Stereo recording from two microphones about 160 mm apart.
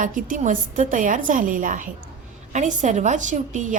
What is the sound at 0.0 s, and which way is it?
A woman's voice, 55° right (ahead or behind).